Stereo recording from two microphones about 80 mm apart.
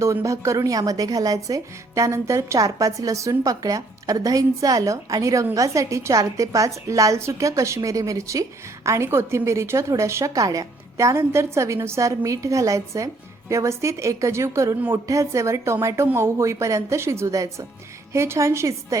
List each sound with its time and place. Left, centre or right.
0.0 s a woman's voice: right